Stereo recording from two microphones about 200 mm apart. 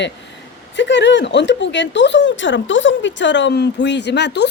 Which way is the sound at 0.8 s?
65° left (ahead or behind).